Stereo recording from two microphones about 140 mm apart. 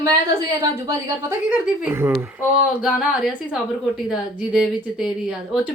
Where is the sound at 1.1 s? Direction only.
15° right (ahead or behind).